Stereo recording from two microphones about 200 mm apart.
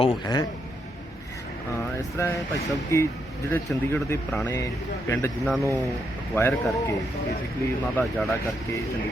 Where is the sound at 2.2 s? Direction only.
15° left (ahead or behind).